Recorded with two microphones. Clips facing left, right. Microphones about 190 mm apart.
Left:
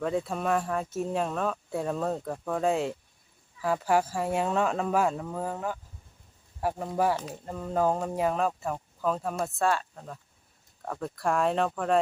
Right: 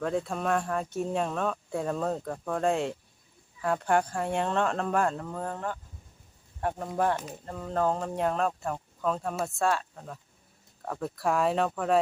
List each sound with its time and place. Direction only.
0.0 s speech: centre (ahead or behind)